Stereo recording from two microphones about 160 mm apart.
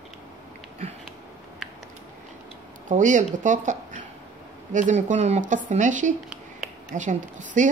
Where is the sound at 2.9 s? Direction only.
50° right (ahead or behind).